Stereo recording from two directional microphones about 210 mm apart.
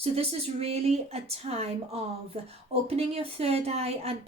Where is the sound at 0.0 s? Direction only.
30° right (ahead or behind).